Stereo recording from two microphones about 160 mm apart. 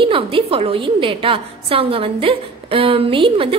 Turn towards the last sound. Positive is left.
turn(degrees=-35)  # may be behind; listen again after turning